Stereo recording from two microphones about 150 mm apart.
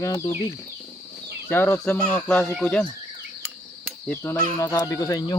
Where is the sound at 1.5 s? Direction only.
15° left (ahead or behind).